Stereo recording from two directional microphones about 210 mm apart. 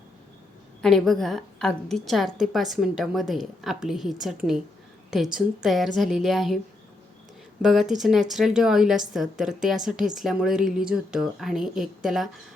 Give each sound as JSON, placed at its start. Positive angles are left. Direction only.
{"t": 0.8, "sound": "a woman's voice", "side_deg": 0}
{"t": 7.6, "sound": "a woman's voice", "side_deg": 0}